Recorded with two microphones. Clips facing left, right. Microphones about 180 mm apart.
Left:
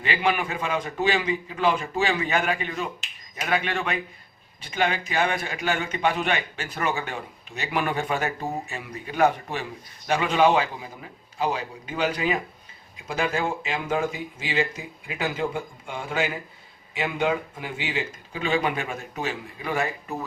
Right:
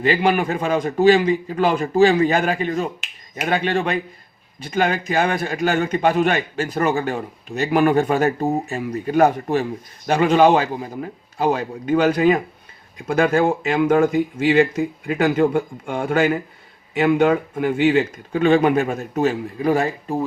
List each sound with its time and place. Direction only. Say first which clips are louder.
0.0 s a man's voice: right 7 dB; 40° right (ahead or behind)